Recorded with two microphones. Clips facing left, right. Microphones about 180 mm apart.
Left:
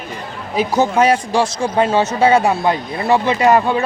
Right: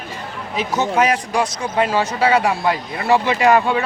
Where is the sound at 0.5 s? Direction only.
35° left (ahead or behind).